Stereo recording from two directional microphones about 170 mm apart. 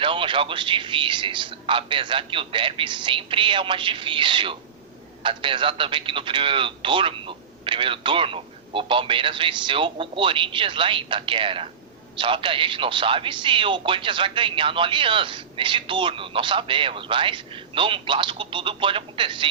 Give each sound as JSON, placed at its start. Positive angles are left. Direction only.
{"t": 0.0, "sound": "a man's voice", "side_deg": -30}